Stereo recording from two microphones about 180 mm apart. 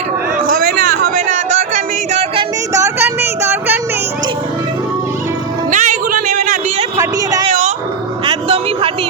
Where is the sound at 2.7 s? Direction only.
15° right (ahead or behind).